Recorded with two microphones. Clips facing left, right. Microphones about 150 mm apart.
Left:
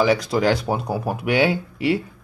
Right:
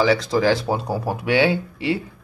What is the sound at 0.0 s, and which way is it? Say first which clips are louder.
Speech: even; 15° left (ahead or behind).